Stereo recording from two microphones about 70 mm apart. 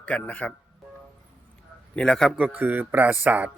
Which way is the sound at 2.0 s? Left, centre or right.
Centre.